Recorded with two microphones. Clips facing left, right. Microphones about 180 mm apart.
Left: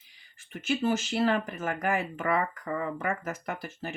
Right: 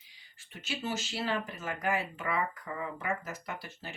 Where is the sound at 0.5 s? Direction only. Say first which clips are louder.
Left 9 dB; 50° left (ahead or behind).